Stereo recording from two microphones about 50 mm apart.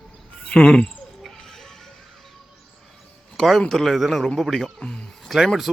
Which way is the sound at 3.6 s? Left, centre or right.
Centre.